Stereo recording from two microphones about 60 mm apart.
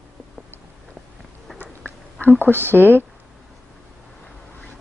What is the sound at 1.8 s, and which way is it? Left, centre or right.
Whispering, left.